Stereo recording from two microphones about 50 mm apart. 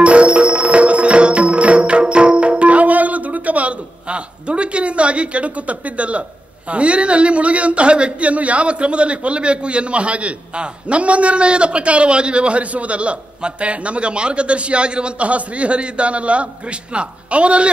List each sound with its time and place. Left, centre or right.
0.0 s music: right
6.7 s a man's voice: right